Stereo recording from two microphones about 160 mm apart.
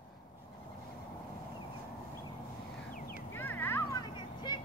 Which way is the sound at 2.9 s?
60° left (ahead or behind).